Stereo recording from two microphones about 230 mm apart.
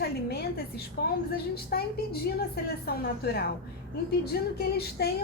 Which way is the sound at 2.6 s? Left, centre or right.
Left.